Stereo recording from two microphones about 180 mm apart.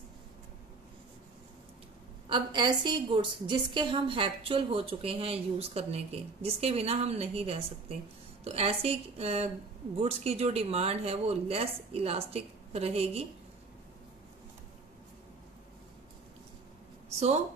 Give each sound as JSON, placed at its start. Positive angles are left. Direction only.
{"t": 2.2, "sound": "a woman's voice", "side_deg": -25}